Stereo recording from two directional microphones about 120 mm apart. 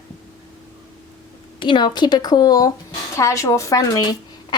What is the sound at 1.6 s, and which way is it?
A woman's voice, 40° left (ahead or behind).